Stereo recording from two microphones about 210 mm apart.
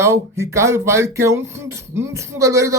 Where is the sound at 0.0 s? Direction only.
15° right (ahead or behind).